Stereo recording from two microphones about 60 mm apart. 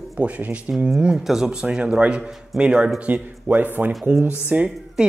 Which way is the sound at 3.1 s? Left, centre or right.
Right.